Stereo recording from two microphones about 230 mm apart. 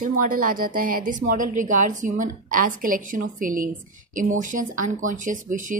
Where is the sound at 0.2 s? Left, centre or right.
Right.